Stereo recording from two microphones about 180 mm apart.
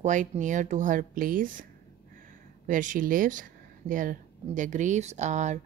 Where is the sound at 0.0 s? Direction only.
45° right (ahead or behind).